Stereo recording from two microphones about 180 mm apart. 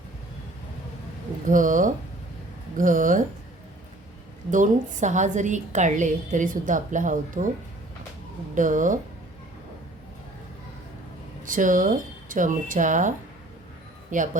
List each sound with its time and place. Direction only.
1.5 s a woman's voice: 45° right (ahead or behind)
4.5 s a woman's voice: 45° right (ahead or behind)
8.5 s a woman's voice: 45° right (ahead or behind)
11.4 s a woman's voice: 45° right (ahead or behind)